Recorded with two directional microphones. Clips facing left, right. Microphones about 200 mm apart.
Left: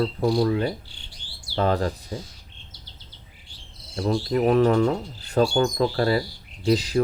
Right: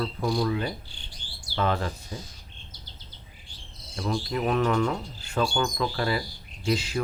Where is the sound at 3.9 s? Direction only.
35° left (ahead or behind).